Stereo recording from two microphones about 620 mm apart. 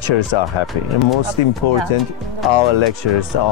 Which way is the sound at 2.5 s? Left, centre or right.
Left.